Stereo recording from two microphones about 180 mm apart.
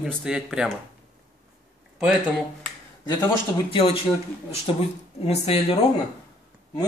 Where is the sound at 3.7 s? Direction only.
30° left (ahead or behind).